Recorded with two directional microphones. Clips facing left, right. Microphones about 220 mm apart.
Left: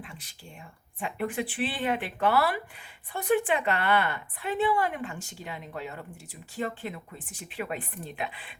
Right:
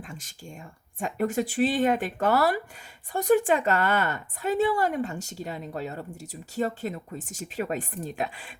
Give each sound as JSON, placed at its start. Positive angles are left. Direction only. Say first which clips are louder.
{"t": 0.0, "sound": "a woman's voice", "louder": "right 4 dB", "side_deg": -45}